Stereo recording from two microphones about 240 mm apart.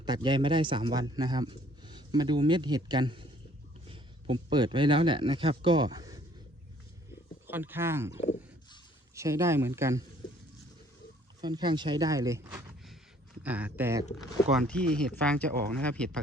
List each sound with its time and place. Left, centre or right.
0.0 s a man's voice: centre
7.4 s speech: centre
8.2 s a sound: left
9.1 s speech: centre
11.3 s speech: centre
14.5 s speech: centre